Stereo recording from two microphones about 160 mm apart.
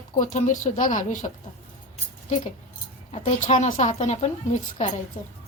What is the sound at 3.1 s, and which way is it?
Speech, 45° left (ahead or behind).